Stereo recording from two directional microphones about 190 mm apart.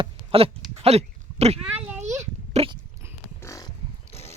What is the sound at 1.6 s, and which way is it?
Speech, 10° right (ahead or behind).